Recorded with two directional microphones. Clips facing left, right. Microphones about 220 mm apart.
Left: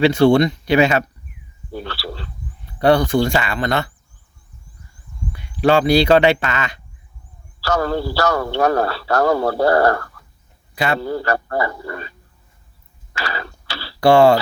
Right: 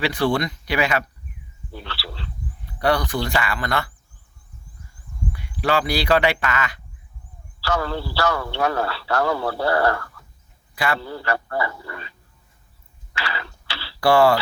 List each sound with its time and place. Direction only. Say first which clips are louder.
0.0 s speech: left 9 dB; 25° left (ahead or behind)
1.7 s frog: left 7 dB; 45° left (ahead or behind)
2.7 s speech: left 7 dB; 25° left (ahead or behind)
5.3 s speech: left 7 dB; 25° left (ahead or behind)
7.6 s a man's voice: left 5 dB; 45° left (ahead or behind)
10.8 s a man's voice: left 4 dB; 25° left (ahead or behind)
11.0 s a man's voice: left 6 dB; 45° left (ahead or behind)
13.1 s a sound: left 4 dB; 45° left (ahead or behind)
14.0 s speech: left 5 dB; 25° left (ahead or behind)